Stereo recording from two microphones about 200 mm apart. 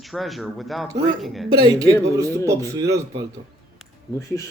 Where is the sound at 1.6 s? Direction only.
20° right (ahead or behind).